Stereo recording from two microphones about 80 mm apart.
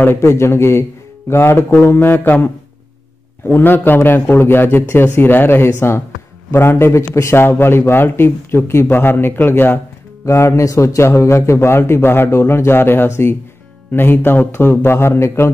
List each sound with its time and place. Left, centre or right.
0.0 s a man's voice: left